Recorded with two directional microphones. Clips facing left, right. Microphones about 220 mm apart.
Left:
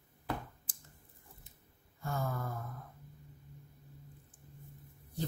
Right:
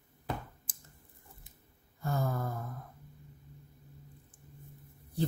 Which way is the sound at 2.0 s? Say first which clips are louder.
Right 4 dB; 40° right (ahead or behind).